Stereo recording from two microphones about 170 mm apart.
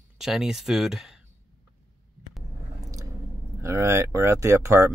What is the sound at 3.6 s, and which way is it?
Speech, 15° right (ahead or behind).